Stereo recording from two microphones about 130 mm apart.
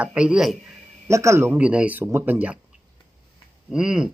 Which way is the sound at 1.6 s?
10° right (ahead or behind).